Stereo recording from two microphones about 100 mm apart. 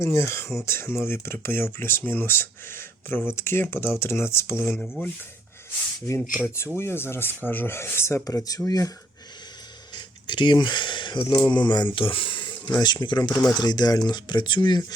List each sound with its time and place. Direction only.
0.0 s speech: 25° left (ahead or behind)
4.7 s speech: 5° left (ahead or behind)
6.7 s speech: 25° left (ahead or behind)
9.9 s speech: 50° left (ahead or behind)
11.3 s speech: 40° left (ahead or behind)
11.9 s speech: 60° left (ahead or behind); by 14.9 s 45° left (ahead or behind)